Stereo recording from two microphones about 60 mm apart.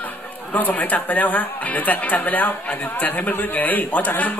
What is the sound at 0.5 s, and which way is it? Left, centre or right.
A man's voice, left.